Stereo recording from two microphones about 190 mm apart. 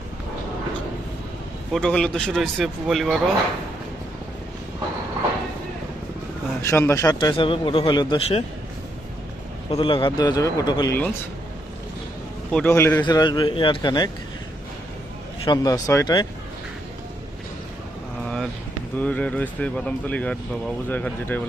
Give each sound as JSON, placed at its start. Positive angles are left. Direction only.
{"t": 1.7, "sound": "speech", "side_deg": 5}
{"t": 6.6, "sound": "speech", "side_deg": 15}
{"t": 7.2, "sound": "a man's voice", "side_deg": 25}
{"t": 9.6, "sound": "a man's voice", "side_deg": 25}
{"t": 12.5, "sound": "speech", "side_deg": 5}
{"t": 13.1, "sound": "a man's voice", "side_deg": 25}
{"t": 15.4, "sound": "a man's voice", "side_deg": 20}
{"t": 18.9, "sound": "speech", "side_deg": 5}